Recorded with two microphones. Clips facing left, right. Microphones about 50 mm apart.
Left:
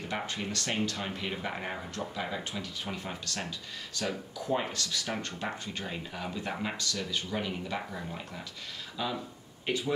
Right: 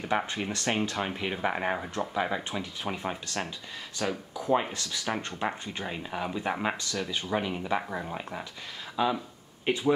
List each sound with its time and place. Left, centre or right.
0.1 s speech: right
4.0 s speech: centre; by 9.9 s right